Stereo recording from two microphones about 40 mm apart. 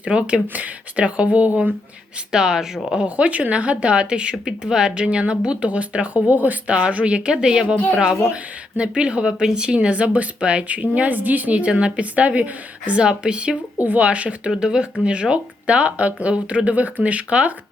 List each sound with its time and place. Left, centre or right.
0.0 s a woman's voice: right
0.4 s speech: right
0.9 s a woman's voice: right
2.3 s speech: centre
3.5 s a woman's voice: right; by 4.9 s centre
4.9 s a woman's voice: right
6.7 s a woman's voice: right
13.0 s a woman's voice: right
13.8 s a woman's voice: right
14.5 s a woman's voice: centre